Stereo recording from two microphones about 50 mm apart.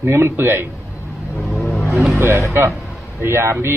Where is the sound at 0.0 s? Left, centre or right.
Right.